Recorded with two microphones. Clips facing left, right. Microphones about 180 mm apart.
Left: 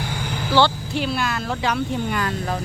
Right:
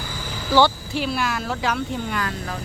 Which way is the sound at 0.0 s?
70° left (ahead or behind).